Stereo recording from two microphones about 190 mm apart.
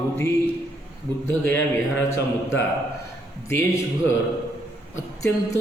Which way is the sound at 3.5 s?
15° left (ahead or behind).